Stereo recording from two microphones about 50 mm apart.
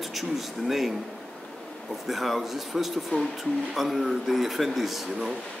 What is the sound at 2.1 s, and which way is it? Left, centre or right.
A man's voice, centre.